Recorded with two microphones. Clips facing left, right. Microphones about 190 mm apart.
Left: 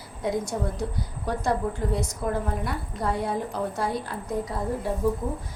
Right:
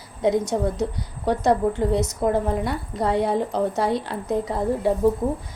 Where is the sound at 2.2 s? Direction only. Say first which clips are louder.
Right 7 dB; 80° right.